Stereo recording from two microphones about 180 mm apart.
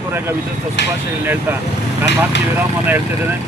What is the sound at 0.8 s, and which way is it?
Speech, 70° left (ahead or behind).